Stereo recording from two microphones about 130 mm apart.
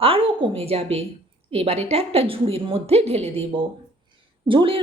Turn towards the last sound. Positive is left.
turn(degrees=-40)  # may be behind; listen again after turning